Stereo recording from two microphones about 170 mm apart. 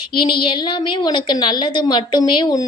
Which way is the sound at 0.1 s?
30° left (ahead or behind).